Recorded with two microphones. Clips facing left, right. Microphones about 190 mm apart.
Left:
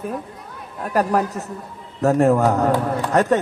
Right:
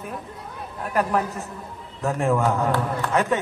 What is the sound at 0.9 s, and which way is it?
A man's voice, 35° left (ahead or behind).